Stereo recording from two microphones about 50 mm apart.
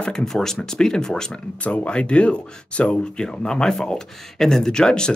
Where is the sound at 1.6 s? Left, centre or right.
Left.